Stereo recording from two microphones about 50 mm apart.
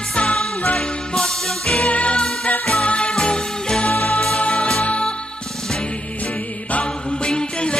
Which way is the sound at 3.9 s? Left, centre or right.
Left.